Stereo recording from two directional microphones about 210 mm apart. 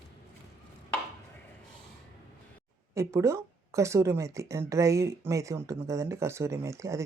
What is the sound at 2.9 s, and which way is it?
Speech, 15° right (ahead or behind).